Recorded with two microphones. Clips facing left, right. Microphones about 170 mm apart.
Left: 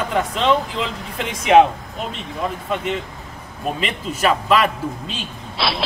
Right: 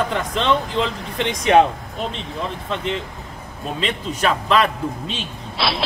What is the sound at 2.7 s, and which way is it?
A man's voice, 10° left (ahead or behind).